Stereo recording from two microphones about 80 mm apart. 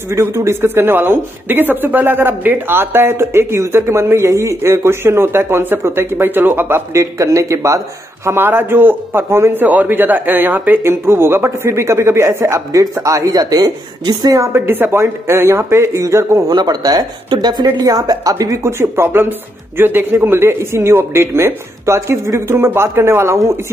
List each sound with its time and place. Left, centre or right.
0.1 s speech: right
8.3 s speech: right
14.4 s speech: right
16.4 s a man's voice: right